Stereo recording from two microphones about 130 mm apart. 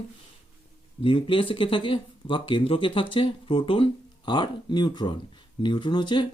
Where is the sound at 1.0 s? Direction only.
40° left (ahead or behind).